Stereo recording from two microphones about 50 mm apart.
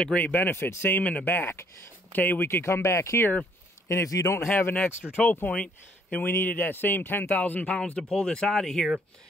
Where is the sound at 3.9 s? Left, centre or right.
Left.